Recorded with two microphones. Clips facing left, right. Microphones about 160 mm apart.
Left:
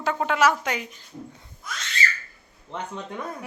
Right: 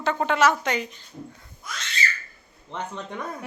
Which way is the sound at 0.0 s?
5° left (ahead or behind).